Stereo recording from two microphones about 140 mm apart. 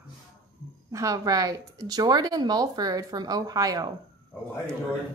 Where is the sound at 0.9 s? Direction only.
25° right (ahead or behind).